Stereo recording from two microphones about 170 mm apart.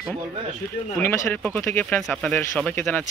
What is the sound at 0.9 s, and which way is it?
Speech, 5° left (ahead or behind).